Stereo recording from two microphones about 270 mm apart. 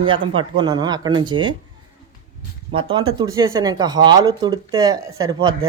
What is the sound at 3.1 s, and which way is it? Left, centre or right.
Speech, centre.